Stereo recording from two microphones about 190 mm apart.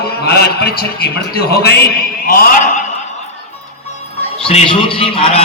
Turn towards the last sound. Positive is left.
turn(degrees=30)  # may be behind; listen again after turning